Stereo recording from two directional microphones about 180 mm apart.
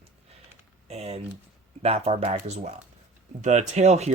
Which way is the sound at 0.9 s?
35° right (ahead or behind).